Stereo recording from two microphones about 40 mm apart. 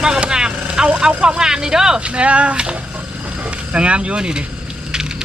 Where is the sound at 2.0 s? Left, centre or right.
Right.